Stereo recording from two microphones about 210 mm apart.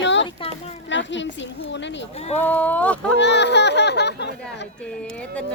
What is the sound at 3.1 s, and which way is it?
Speech, 55° left (ahead or behind).